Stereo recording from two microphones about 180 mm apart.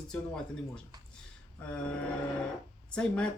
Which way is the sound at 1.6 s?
5° left (ahead or behind).